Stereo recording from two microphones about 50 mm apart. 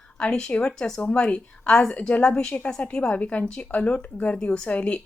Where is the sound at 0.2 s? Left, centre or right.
Centre.